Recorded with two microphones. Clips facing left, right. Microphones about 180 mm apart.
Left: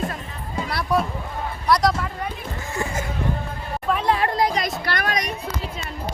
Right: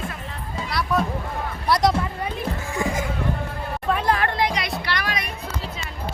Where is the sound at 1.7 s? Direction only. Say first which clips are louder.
Even; 25° right (ahead or behind).